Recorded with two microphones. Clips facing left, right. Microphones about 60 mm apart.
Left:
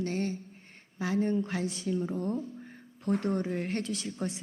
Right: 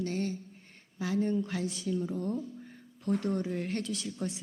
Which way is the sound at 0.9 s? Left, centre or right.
Left.